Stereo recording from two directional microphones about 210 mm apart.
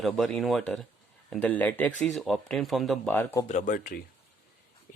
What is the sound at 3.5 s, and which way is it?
Speech, 35° left (ahead or behind).